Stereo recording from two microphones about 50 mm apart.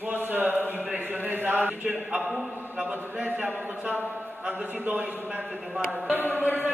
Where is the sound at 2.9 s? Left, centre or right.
Right.